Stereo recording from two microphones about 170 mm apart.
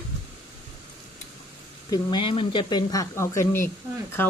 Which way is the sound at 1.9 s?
25° left (ahead or behind).